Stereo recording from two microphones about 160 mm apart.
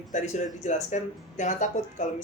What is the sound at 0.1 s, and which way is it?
Speech, 50° left (ahead or behind).